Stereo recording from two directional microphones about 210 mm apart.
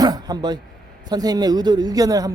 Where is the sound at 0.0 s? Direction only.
20° right (ahead or behind).